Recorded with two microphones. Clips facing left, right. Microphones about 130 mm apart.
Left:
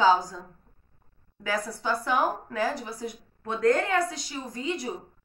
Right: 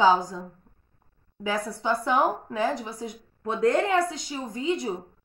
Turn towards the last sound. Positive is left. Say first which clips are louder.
# right 4 dB
turn(degrees=-20)  # may be behind; listen again after turning